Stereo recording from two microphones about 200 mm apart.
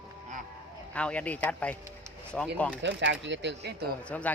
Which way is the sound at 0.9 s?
5° left (ahead or behind).